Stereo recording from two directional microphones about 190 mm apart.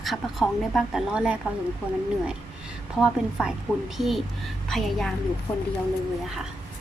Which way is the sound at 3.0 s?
5° right (ahead or behind).